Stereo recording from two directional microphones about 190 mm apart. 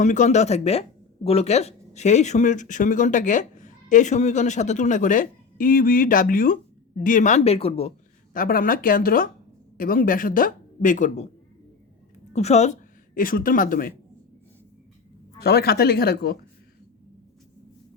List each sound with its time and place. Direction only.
0.0 s speech: 40° left (ahead or behind)
8.3 s a woman's voice: 50° left (ahead or behind)
12.3 s a woman's voice: 35° left (ahead or behind)
15.4 s speech: 55° left (ahead or behind)